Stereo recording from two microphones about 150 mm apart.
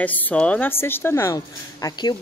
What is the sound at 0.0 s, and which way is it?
A woman's voice, 10° left (ahead or behind).